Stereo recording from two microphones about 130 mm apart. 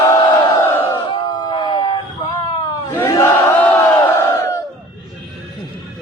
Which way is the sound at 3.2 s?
15° left (ahead or behind).